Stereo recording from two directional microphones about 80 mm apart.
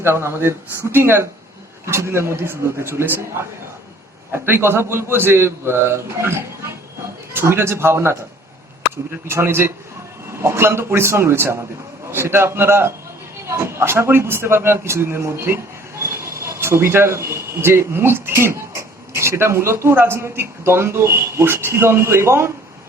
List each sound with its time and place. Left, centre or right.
0.0 s a man's voice: right
4.3 s a man's voice: right
9.2 s a man's voice: right